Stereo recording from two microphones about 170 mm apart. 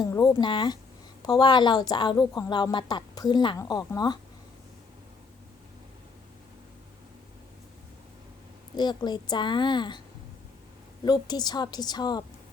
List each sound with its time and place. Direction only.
0.0 s a woman's voice: 25° left (ahead or behind)
8.7 s a woman's voice: 25° left (ahead or behind)
11.0 s a woman's voice: 25° left (ahead or behind)